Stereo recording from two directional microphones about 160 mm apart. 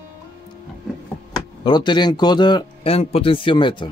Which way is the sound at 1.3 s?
25° left (ahead or behind).